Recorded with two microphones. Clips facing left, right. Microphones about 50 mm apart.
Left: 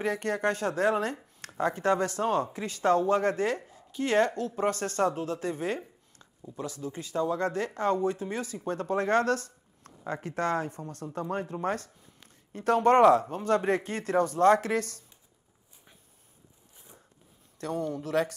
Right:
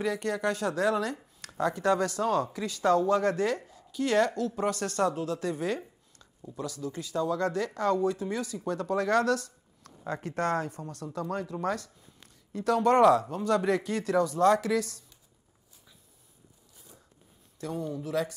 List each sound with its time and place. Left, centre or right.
0.0 s speech: left
16.7 s a sound: left
17.6 s a man's voice: left